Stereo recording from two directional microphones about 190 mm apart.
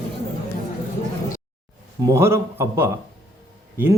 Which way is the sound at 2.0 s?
15° right (ahead or behind).